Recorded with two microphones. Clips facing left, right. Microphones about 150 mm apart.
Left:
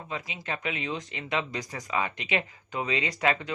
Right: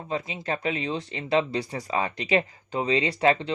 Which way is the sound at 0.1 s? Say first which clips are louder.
Right 6 dB; 30° right (ahead or behind).